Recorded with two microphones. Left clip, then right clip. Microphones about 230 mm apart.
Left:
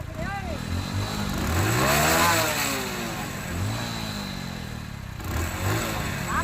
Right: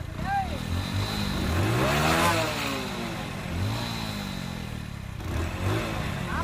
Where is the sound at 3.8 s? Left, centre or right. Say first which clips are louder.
Left 1 dB; left.